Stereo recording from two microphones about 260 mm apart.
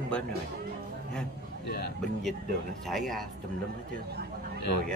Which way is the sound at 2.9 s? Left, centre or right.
Centre.